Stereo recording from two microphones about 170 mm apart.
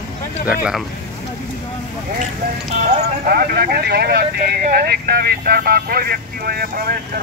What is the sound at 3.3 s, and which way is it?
Speech, 60° right (ahead or behind).